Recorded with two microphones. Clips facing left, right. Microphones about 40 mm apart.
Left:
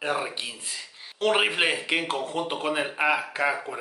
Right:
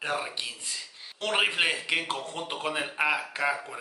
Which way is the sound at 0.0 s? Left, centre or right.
Centre.